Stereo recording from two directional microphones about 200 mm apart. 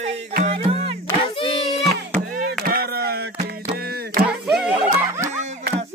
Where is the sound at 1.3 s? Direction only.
25° left (ahead or behind).